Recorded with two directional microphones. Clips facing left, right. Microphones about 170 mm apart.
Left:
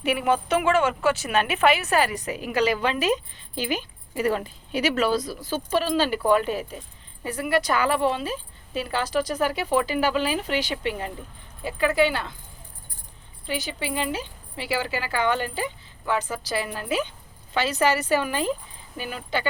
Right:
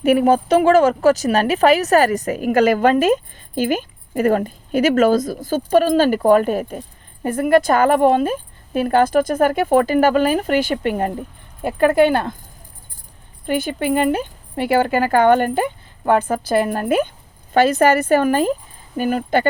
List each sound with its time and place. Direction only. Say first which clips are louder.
0.0 s speech: right 9 dB; 45° right (ahead or behind)
13.4 s speech: right 9 dB; 55° right (ahead or behind)